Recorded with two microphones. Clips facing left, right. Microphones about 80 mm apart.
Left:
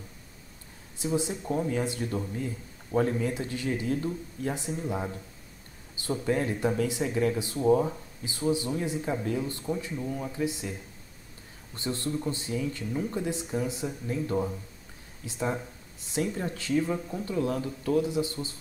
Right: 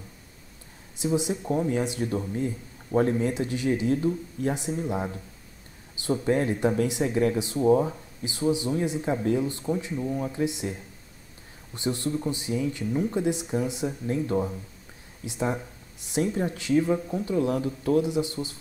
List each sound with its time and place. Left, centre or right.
0.9 s speech: centre
2.0 s a man's voice: right; by 5.2 s centre
6.2 s speech: right
14.3 s speech: centre